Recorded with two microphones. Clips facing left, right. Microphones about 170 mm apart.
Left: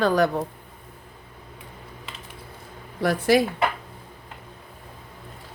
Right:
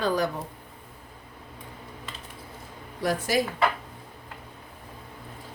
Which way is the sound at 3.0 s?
65° left (ahead or behind).